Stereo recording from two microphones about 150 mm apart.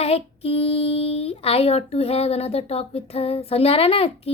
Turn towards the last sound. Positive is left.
turn(degrees=40)  # may be behind; listen again after turning